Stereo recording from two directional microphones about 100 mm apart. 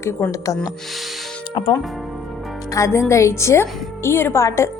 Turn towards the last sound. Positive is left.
turn(degrees=30)  # may be behind; listen again after turning